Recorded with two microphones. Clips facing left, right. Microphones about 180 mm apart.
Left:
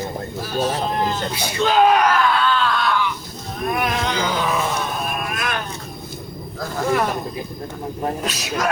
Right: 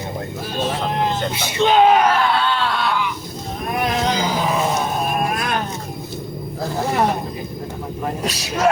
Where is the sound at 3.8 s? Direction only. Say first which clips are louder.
Right 5 dB; 35° right (ahead or behind).